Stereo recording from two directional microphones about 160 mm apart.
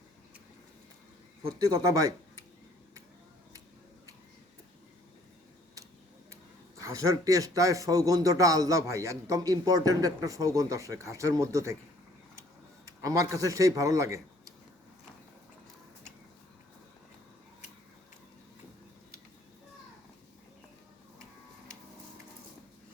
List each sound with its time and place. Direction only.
1.5 s a man's voice: 20° right (ahead or behind)
6.3 s a man's voice: 20° right (ahead or behind)
12.8 s a man's voice: 20° right (ahead or behind)